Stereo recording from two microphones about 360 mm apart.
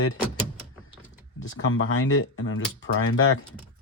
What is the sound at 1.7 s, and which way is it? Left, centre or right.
Speech, left.